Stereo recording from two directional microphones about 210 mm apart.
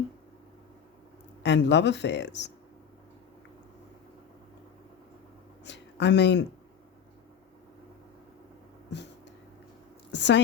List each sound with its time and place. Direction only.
1.4 s speech: 55° left (ahead or behind)
5.6 s a sound: 55° left (ahead or behind)
10.1 s a woman's voice: 55° left (ahead or behind)